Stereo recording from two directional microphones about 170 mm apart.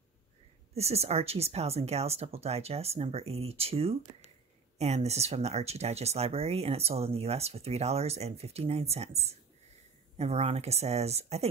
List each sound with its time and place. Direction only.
0.7 s speech: 40° right (ahead or behind)